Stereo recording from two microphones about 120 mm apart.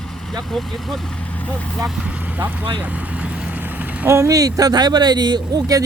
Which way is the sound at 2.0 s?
10° right (ahead or behind).